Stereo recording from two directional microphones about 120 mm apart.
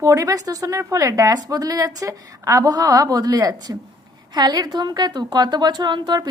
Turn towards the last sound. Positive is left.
turn(degrees=-35)  # may be behind; listen again after turning